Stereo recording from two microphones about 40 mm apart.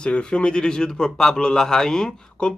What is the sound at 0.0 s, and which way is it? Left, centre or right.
A man's voice, left.